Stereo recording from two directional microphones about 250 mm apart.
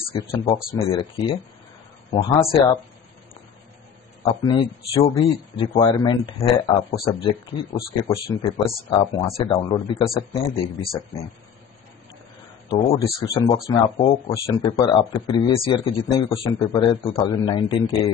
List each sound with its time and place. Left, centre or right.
0.1 s a man's voice: left
4.2 s a man's voice: centre
12.6 s a man's voice: centre
14.3 s speech: centre